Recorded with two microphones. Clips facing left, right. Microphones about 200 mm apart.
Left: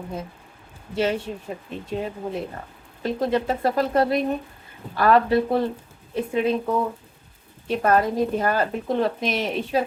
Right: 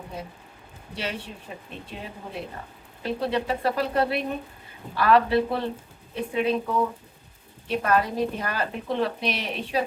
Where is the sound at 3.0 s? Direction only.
45° left (ahead or behind).